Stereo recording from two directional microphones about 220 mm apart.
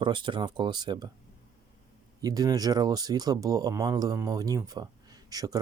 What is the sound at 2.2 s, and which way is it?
Speech, 15° right (ahead or behind).